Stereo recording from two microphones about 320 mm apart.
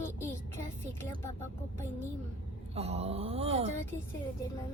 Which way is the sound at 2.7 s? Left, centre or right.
Centre.